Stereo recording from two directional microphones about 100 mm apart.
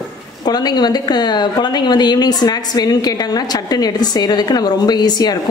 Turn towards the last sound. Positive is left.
turn(degrees=40)  # may be behind; listen again after turning